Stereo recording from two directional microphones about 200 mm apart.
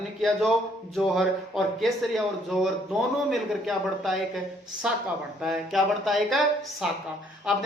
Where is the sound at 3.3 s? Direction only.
Centre (ahead or behind).